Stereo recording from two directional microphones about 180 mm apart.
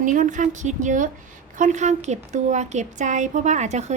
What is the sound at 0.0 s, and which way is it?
A woman's voice, 45° right (ahead or behind).